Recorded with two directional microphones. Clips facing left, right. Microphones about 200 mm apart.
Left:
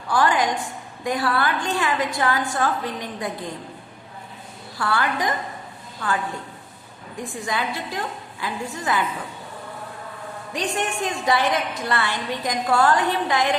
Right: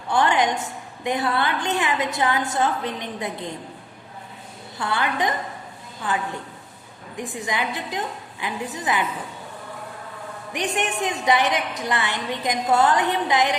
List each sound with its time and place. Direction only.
0.1 s a woman's voice: 25° right (ahead or behind)
4.8 s a woman's voice: 20° right (ahead or behind)
7.2 s a woman's voice: 20° right (ahead or behind)
10.5 s a woman's voice: 20° right (ahead or behind)